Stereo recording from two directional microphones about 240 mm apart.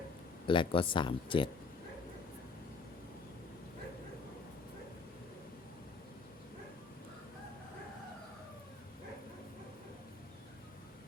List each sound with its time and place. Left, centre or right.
0.4 s speech: left